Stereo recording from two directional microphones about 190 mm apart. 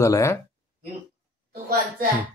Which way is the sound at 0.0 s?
15° left (ahead or behind).